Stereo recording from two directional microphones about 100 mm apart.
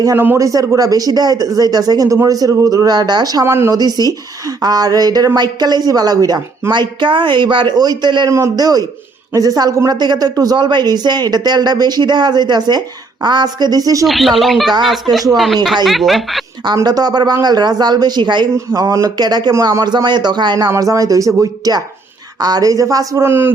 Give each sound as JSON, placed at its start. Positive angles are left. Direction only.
{"t": 0.3, "sound": "speech", "side_deg": -35}
{"t": 3.4, "sound": "speech", "side_deg": -25}
{"t": 3.8, "sound": "speech", "side_deg": -40}
{"t": 8.3, "sound": "a woman's voice", "side_deg": -35}
{"t": 14.0, "sound": "speech", "side_deg": 0}
{"t": 15.1, "sound": "a woman's voice", "side_deg": -45}
{"t": 15.6, "sound": "speech", "side_deg": 0}
{"t": 16.8, "sound": "a woman's voice", "side_deg": -40}
{"t": 18.5, "sound": "a woman's voice", "side_deg": -35}
{"t": 20.7, "sound": "speech", "side_deg": -35}
{"t": 23.2, "sound": "speech", "side_deg": -20}